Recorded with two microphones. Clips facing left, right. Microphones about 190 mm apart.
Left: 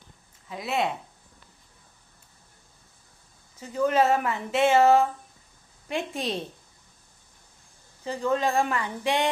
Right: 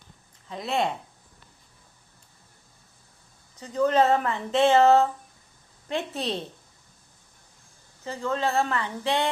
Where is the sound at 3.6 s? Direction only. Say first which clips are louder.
Right 1 dB; 10° left (ahead or behind).